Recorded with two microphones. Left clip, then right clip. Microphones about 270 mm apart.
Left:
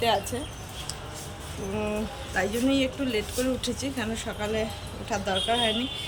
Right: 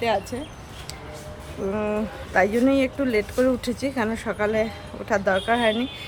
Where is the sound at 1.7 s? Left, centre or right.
Centre.